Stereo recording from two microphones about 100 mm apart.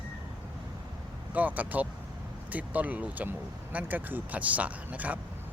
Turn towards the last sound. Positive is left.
turn(degrees=-15)  # may be behind; listen again after turning